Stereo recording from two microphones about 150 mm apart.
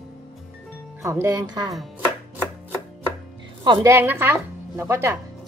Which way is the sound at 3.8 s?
15° right (ahead or behind).